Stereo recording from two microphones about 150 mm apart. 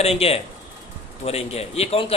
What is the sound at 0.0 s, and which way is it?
Speech, 40° left (ahead or behind).